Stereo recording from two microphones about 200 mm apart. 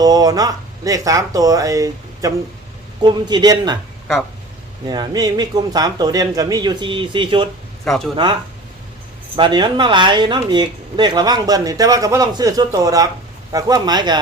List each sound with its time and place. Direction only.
0.0 s speech: 20° right (ahead or behind)
4.9 s speech: 20° right (ahead or behind)
7.9 s speech: centre (ahead or behind)
8.1 s speech: 20° right (ahead or behind)